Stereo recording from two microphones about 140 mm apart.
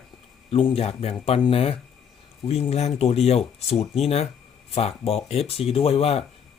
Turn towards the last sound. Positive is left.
turn(degrees=45)  # may be behind; listen again after turning